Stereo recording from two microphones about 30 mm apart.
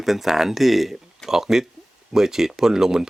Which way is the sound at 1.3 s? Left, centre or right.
Centre.